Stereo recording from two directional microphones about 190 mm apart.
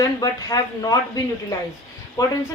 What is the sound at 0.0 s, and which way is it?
Speech, 20° left (ahead or behind).